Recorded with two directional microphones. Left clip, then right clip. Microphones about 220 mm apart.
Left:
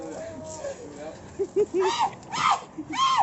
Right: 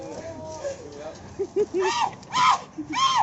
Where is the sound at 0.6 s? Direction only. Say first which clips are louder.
Right 3 dB; centre (ahead or behind).